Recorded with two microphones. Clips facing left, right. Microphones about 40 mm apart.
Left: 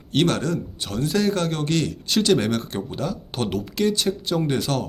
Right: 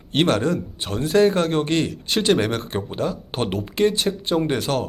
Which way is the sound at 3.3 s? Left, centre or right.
Right.